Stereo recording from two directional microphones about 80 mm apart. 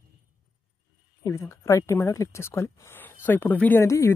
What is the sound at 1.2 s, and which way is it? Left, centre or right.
Speech, left.